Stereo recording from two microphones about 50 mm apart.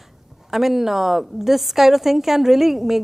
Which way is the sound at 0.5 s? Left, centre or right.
Centre.